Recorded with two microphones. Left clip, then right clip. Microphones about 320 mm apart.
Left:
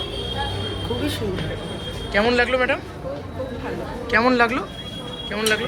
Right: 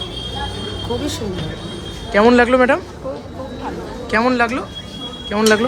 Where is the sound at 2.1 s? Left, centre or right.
Right.